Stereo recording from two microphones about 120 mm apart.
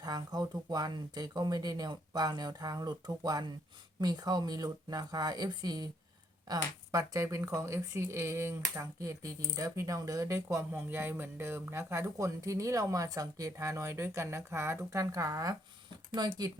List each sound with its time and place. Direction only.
0.0 s speech: 35° right (ahead or behind)